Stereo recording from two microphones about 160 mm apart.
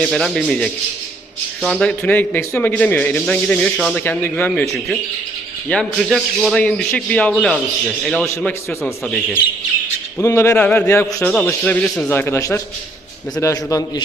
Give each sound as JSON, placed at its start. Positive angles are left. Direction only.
{"t": 0.0, "sound": "a man's voice", "side_deg": 0}
{"t": 10.2, "sound": "a man's voice", "side_deg": 15}